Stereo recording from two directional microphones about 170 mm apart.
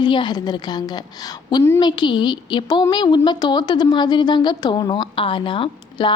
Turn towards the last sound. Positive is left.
turn(degrees=30)  # may be behind; listen again after turning